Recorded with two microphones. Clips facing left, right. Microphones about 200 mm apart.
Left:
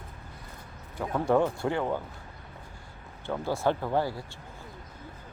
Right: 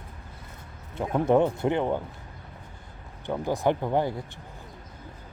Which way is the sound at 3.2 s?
15° right (ahead or behind).